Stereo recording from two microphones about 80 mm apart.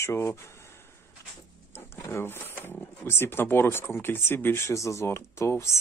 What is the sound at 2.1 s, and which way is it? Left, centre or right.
Speech, left.